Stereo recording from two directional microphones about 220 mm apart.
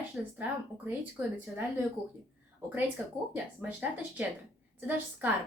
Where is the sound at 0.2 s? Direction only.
5° right (ahead or behind).